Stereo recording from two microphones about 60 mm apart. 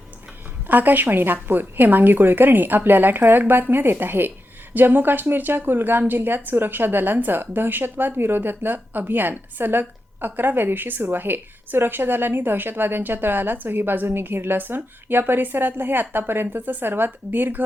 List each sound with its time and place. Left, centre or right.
0.7 s a woman's voice: right